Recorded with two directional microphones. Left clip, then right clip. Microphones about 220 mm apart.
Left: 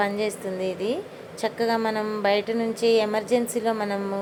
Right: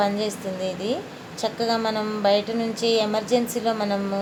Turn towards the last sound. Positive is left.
turn(degrees=15)  # may be behind; listen again after turning